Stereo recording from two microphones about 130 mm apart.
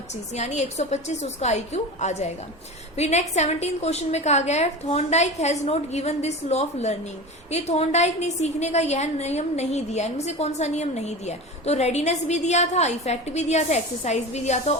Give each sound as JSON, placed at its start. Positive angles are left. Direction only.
{"t": 0.3, "sound": "a woman's voice", "side_deg": 60}